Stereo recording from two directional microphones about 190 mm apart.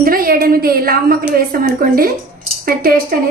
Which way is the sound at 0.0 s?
50° right (ahead or behind).